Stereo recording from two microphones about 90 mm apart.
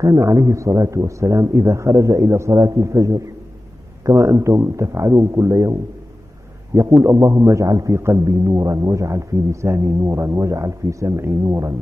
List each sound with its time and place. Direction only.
0.0 s a man's voice: 35° right (ahead or behind)